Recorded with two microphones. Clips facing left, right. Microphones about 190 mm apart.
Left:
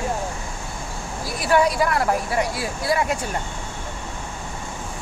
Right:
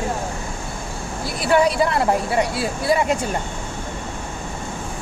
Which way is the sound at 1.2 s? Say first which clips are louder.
Right 2 dB; 25° right (ahead or behind).